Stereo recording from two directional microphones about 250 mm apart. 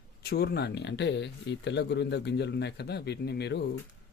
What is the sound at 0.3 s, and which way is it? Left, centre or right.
Speech, left.